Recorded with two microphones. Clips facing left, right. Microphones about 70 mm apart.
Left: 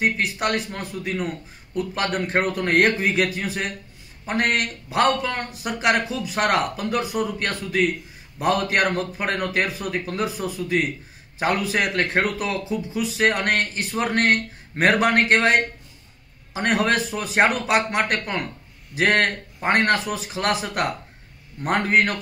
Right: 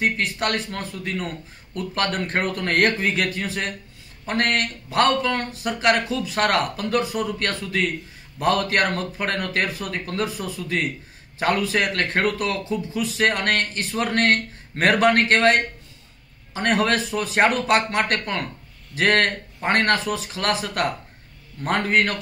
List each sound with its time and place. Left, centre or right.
0.0 s a man's voice: centre